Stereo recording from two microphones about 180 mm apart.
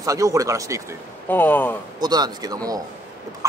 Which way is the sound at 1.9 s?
20° right (ahead or behind).